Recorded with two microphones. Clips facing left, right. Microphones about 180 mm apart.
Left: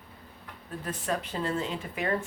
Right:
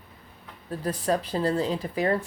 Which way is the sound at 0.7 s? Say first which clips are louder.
Right 6 dB; 35° right (ahead or behind).